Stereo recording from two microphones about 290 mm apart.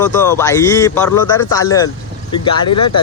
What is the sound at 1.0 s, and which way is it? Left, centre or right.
Speech, left.